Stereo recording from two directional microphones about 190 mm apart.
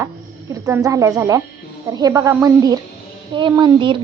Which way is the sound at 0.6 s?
15° right (ahead or behind).